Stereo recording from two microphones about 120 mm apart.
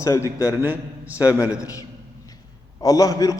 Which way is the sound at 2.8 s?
30° left (ahead or behind).